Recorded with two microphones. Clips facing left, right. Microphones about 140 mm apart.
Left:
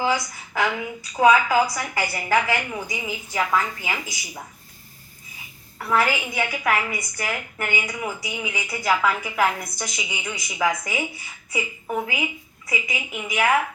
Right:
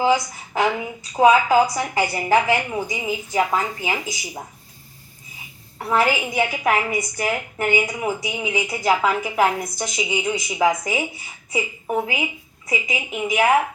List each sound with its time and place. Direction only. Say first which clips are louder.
0.0 s a woman's voice: right 5 dB; 20° right (ahead or behind)
5.9 s a woman's voice: right 2 dB; 20° right (ahead or behind)